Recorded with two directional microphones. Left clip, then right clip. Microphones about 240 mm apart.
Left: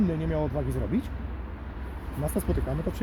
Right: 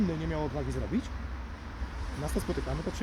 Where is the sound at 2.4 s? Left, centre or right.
Left.